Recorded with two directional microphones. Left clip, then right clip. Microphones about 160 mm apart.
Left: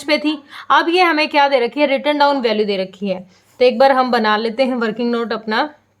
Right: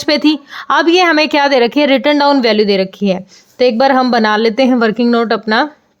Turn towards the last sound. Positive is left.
turn(degrees=-45)  # may be behind; listen again after turning